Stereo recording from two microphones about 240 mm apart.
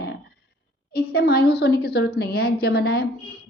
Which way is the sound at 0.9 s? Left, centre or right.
Left.